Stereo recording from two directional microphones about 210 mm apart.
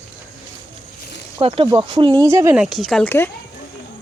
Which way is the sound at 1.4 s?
30° right (ahead or behind).